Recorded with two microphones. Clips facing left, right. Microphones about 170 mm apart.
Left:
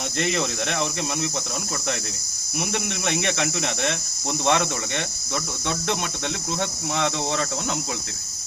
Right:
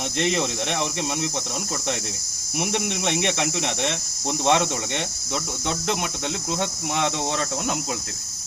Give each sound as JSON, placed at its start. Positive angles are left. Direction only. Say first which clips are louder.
{"t": 0.2, "sound": "speech", "louder": "right 1 dB", "side_deg": -20}
{"t": 2.6, "sound": "speech", "louder": "right 2 dB", "side_deg": -20}
{"t": 6.6, "sound": "cricket", "louder": "even", "side_deg": -15}